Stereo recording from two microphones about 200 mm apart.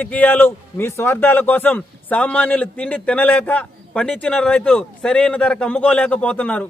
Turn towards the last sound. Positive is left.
turn(degrees=5)  # may be behind; listen again after turning